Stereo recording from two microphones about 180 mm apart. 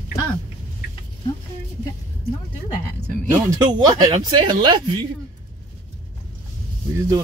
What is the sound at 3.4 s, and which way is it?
Speech, 25° right (ahead or behind).